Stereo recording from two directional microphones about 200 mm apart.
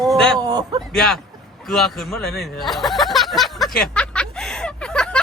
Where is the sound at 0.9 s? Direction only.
5° left (ahead or behind).